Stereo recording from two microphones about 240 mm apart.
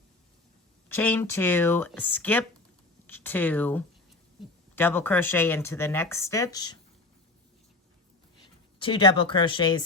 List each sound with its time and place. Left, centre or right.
0.9 s speech: centre
8.8 s speech: centre